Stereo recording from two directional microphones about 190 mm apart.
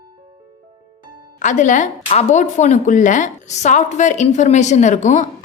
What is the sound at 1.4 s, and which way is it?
A woman's voice, 40° left (ahead or behind).